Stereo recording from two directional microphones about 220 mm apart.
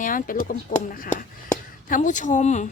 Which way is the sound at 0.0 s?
40° left (ahead or behind).